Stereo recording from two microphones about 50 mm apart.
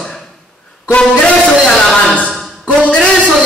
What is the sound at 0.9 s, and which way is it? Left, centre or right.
Speech, centre.